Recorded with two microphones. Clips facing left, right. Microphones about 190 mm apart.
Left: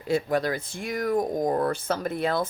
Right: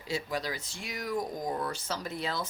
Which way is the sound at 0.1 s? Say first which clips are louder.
Left 9 dB; 55° left (ahead or behind).